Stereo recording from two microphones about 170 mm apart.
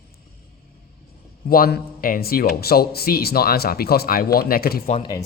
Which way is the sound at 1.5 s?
60° left (ahead or behind).